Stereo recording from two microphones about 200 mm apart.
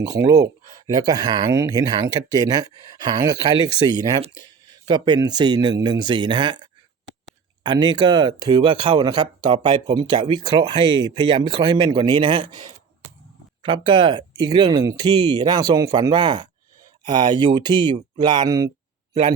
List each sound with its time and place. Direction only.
0.0 s speech: 15° right (ahead or behind)